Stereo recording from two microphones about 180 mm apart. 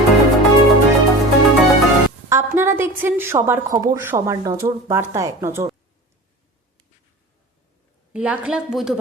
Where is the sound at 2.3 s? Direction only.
15° right (ahead or behind).